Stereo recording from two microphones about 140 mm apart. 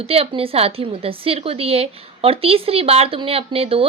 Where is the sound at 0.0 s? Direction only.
45° right (ahead or behind).